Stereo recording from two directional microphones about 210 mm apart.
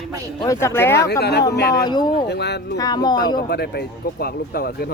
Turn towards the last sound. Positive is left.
turn(degrees=45)  # may be behind; listen again after turning